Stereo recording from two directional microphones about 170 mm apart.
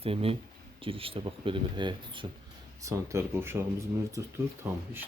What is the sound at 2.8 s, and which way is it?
Speech, 15° right (ahead or behind).